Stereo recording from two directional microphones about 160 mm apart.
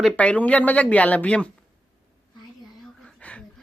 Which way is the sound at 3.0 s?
5° left (ahead or behind).